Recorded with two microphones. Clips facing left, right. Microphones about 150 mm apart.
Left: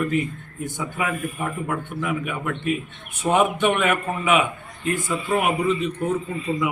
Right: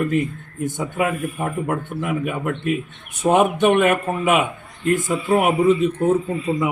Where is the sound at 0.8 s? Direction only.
45° right (ahead or behind).